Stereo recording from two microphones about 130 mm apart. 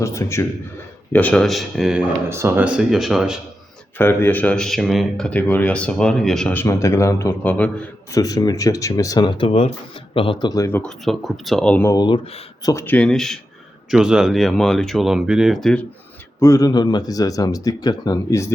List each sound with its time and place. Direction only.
0.0 s speech: 20° left (ahead or behind)
1.1 s speech: 10° left (ahead or behind)
2.3 s speech: 20° right (ahead or behind)
2.6 s speech: 5° right (ahead or behind)
3.9 s speech: 15° left (ahead or behind)
6.5 s speech: 20° left (ahead or behind)
8.1 s speech: 25° left (ahead or behind); by 9.7 s 50° left (ahead or behind)
10.4 s speech: 30° left (ahead or behind)
10.8 s speech: centre (ahead or behind)
11.9 s speech: 35° left (ahead or behind)
12.8 s speech: 10° left (ahead or behind)
16.4 s speech: 25° left (ahead or behind)